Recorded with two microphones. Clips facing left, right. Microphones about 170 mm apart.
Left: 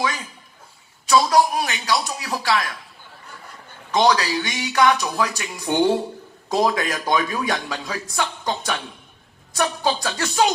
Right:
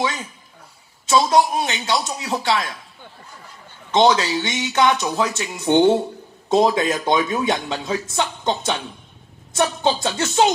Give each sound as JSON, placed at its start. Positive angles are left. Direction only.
{"t": 0.0, "sound": "a man's voice", "side_deg": -25}
{"t": 3.9, "sound": "a man's voice", "side_deg": -25}